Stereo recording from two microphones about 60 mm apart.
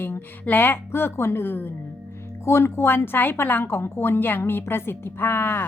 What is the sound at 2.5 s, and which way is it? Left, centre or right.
A woman's voice, left.